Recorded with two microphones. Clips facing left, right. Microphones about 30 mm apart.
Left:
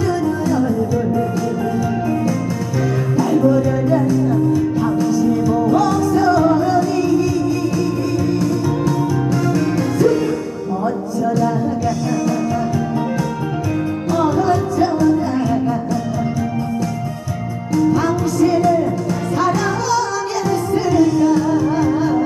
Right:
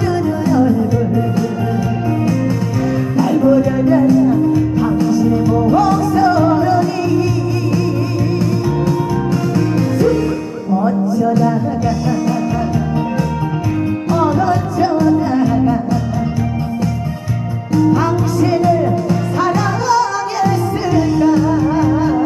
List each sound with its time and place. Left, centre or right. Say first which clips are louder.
0.5 s music: right 7 dB; right
3.3 s music: right 3 dB; right
4.5 s music: right 2 dB; right
8.4 s music: right 1 dB; right
14.1 s music: right 1 dB; right
17.7 s music: right 2 dB; right